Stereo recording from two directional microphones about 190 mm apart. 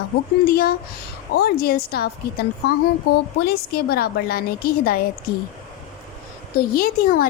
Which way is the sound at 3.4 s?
55° left (ahead or behind).